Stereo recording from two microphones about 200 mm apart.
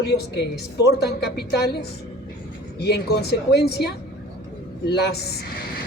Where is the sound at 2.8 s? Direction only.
55° left (ahead or behind).